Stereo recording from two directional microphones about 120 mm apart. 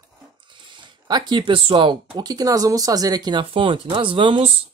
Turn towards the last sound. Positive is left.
turn(degrees=-45)  # may be behind; listen again after turning